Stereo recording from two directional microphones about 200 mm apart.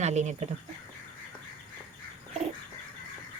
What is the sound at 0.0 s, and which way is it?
Speech, 35° right (ahead or behind).